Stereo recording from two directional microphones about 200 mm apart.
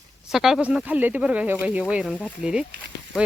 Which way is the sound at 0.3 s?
Centre (ahead or behind).